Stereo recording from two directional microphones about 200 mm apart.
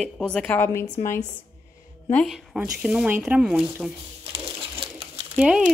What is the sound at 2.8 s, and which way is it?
A woman's voice, 5° right (ahead or behind).